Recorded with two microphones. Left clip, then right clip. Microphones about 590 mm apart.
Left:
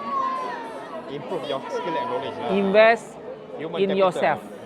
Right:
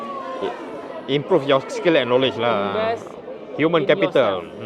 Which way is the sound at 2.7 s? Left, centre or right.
Left.